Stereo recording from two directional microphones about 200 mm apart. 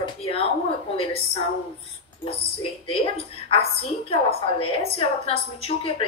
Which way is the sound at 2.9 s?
30° left (ahead or behind).